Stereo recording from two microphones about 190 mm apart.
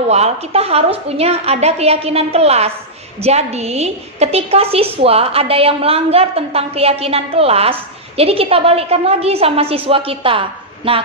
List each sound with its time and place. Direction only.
0.1 s a woman's voice: 35° right (ahead or behind)